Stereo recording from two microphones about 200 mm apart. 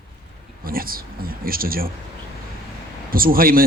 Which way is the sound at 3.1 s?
45° right (ahead or behind).